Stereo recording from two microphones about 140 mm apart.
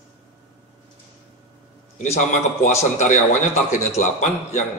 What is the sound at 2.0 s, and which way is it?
A man's voice, 60° left (ahead or behind).